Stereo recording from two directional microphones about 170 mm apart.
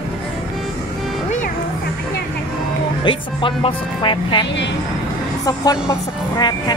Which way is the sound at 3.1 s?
30° left (ahead or behind).